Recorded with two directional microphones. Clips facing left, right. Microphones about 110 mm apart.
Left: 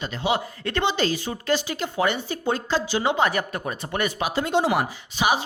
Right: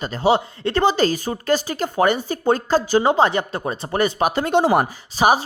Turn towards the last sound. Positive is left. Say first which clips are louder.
# right 6 dB
turn(degrees=-40)  # may be behind; listen again after turning